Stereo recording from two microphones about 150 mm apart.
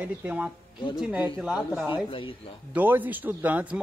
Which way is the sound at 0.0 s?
10° right (ahead or behind).